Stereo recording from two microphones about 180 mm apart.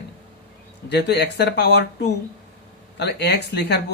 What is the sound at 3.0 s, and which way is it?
Speech, 70° left (ahead or behind).